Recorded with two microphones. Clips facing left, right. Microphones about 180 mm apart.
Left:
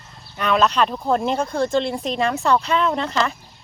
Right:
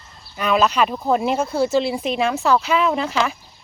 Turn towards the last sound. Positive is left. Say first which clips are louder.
# right 1 dB
turn(degrees=-5)  # may be behind; listen again after turning